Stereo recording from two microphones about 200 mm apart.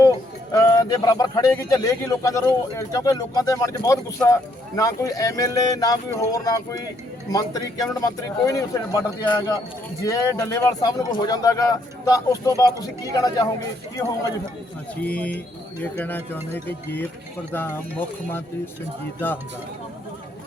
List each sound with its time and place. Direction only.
0.5 s a man's voice: 15° left (ahead or behind)